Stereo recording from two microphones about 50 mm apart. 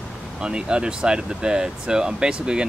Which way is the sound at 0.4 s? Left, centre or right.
Centre.